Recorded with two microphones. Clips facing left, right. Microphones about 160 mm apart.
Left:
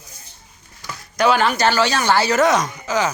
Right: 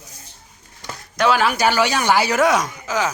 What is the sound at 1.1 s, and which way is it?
Speech, centre (ahead or behind).